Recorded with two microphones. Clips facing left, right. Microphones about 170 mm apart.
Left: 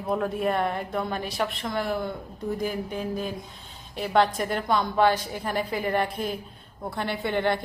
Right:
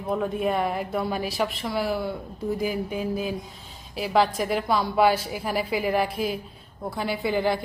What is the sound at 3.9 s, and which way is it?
Speech, centre (ahead or behind).